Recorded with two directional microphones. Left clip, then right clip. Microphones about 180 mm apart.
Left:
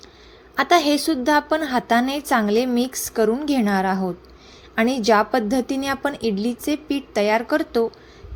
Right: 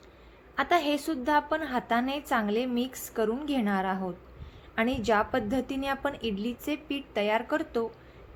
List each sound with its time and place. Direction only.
0.5 s a woman's voice: 35° left (ahead or behind)